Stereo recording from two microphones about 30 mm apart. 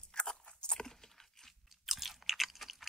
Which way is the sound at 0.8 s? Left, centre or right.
Centre.